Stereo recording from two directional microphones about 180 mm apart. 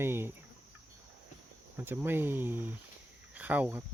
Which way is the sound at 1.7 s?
10° right (ahead or behind).